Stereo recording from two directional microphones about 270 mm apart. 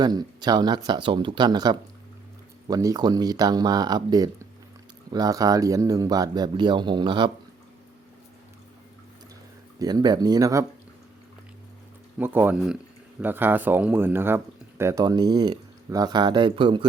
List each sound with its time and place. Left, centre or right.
0.0 s speech: centre
9.7 s speech: centre
12.2 s speech: centre